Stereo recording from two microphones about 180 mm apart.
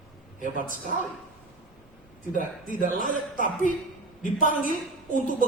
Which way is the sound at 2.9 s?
45° left (ahead or behind).